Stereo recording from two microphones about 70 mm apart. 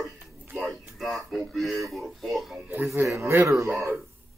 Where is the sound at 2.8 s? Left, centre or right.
Right.